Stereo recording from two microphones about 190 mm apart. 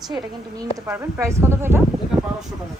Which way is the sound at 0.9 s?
10° right (ahead or behind).